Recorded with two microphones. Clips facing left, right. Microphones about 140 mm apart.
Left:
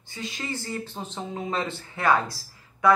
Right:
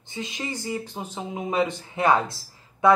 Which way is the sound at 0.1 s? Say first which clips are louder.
Right 1 dB; 20° right (ahead or behind).